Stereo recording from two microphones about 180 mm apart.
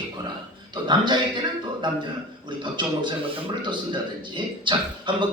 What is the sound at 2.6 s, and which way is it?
Speech, 25° right (ahead or behind).